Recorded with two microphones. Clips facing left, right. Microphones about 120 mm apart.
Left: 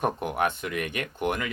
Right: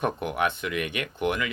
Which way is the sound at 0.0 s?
45° left (ahead or behind).